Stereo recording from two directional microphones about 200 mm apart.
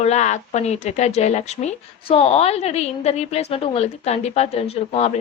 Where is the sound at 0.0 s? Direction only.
35° left (ahead or behind).